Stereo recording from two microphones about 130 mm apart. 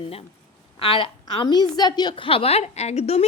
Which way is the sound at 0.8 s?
45° left (ahead or behind).